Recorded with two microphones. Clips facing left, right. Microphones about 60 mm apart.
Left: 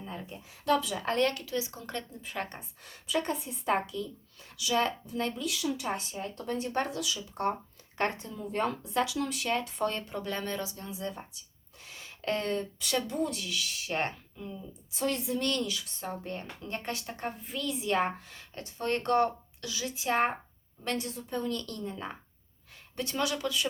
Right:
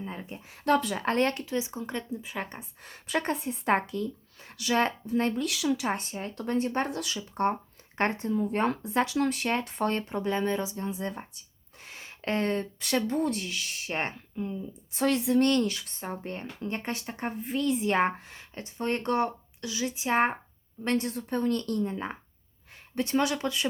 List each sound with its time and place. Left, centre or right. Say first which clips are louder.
0.0 s a sound: right 3 dB; right
0.4 s speech: right 3 dB; right; by 2.6 s centre
3.1 s speech: right 2 dB; right
5.4 s speech: right 5 dB; right
5.9 s speech: right 3 dB; right
14.9 s speech: right 6 dB; right
15.4 s speech: right 7 dB; right
16.0 s speech: right 1 dB; right
17.4 s speech: right 10 dB; right
19.0 s speech: left 2 dB; centre
19.6 s speech: right 3 dB; right
21.1 s speech: right 5 dB; right